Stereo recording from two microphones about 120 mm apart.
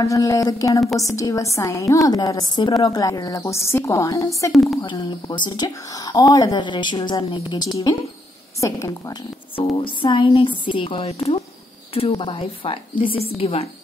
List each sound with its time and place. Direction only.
0.0 s a woman's voice: 30° left (ahead or behind)
4.9 s a woman's voice: 40° left (ahead or behind)
9.6 s a woman's voice: 45° left (ahead or behind)